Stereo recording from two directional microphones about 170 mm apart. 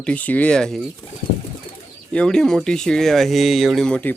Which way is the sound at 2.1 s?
5° left (ahead or behind).